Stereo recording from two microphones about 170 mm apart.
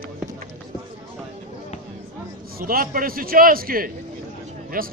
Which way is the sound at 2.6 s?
55° right (ahead or behind).